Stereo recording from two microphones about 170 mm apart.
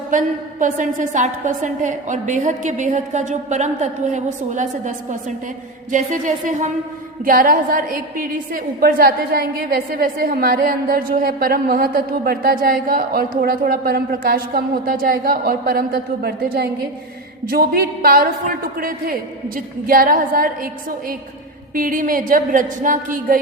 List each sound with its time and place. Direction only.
0.1 s a woman's voice: 50° right (ahead or behind)
21.8 s a woman's voice: 55° right (ahead or behind)